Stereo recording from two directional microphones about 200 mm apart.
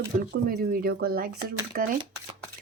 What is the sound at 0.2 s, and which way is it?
Speech, 45° right (ahead or behind).